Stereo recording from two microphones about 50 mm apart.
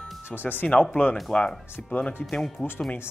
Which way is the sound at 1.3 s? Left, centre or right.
Centre.